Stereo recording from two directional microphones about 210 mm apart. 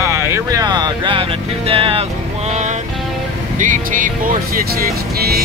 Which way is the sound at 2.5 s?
35° right (ahead or behind).